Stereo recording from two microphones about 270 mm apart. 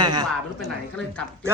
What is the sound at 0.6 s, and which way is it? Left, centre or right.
Speech, centre.